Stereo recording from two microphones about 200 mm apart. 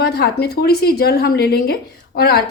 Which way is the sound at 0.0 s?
50° left (ahead or behind).